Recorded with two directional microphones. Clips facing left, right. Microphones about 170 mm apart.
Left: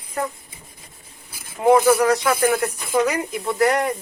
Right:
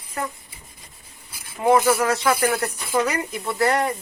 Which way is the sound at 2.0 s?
15° left (ahead or behind).